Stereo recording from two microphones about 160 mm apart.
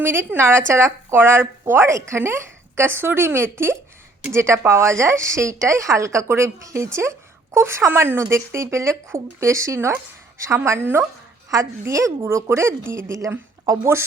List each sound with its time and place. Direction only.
0.0 s a woman's voice: 15° right (ahead or behind)